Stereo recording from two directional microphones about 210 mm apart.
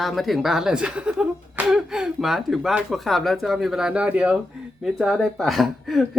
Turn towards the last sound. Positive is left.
turn(degrees=0)  # may be behind; listen again after turning